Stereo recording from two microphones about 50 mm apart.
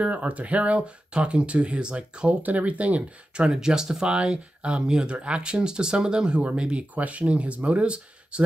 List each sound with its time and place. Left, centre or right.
0.0 s speech: right